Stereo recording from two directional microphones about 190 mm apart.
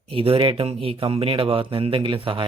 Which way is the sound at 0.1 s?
30° right (ahead or behind).